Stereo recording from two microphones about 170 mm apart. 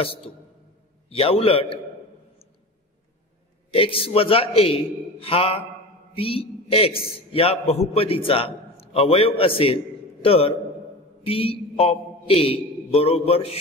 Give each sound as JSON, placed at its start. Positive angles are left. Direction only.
{"t": 1.1, "sound": "a man's voice", "side_deg": 35}
{"t": 3.7, "sound": "a man's voice", "side_deg": 35}
{"t": 6.1, "sound": "mantra", "side_deg": 35}
{"t": 7.0, "sound": "a man's voice", "side_deg": 35}